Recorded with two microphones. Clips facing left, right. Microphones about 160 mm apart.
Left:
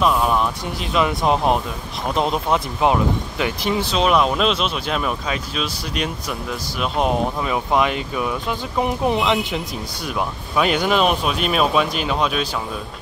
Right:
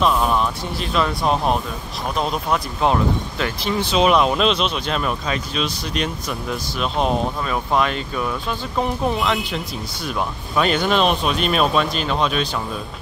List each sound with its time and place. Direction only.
0.0 s speech: 10° left (ahead or behind)
3.9 s speech: centre (ahead or behind); by 9.6 s 20° left (ahead or behind)
10.0 s speech: 5° left (ahead or behind)